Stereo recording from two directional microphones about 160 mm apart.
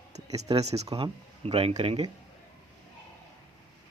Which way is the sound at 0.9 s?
30° right (ahead or behind).